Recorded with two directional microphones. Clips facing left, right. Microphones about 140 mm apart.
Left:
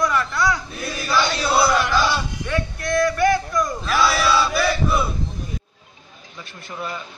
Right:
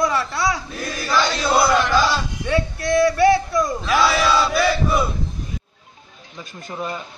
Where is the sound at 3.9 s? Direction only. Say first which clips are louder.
Right 1 dB; 10° right (ahead or behind).